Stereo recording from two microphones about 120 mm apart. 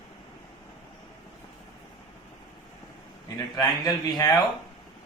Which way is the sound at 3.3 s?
30° left (ahead or behind).